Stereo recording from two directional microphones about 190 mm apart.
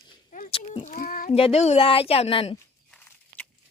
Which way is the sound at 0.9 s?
50° left (ahead or behind).